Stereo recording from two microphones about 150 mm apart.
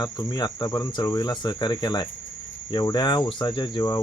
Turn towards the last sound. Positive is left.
turn(degrees=30)  # may be behind; listen again after turning